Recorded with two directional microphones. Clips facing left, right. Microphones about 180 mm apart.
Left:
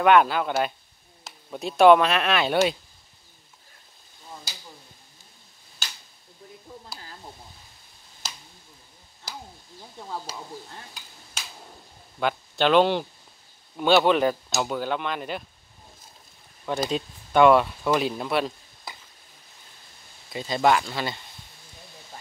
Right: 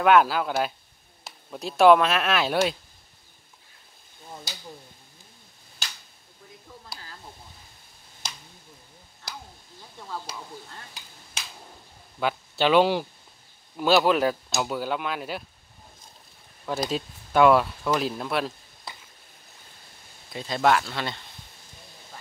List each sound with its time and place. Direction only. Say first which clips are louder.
0.0 s speech: left 1 dB; centre (ahead or behind)
9.9 s a sound: left 1 dB; 20° left (ahead or behind)
12.2 s speech: left 1 dB; 5° right (ahead or behind)
16.6 s speech: left 1 dB; centre (ahead or behind)
20.3 s speech: left 1 dB; centre (ahead or behind)